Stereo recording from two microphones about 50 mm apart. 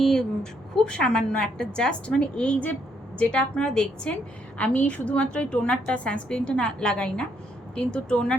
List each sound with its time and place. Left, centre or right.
0.0 s a woman's voice: centre